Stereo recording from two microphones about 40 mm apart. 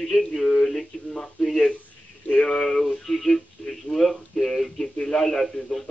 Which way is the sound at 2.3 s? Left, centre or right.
Centre.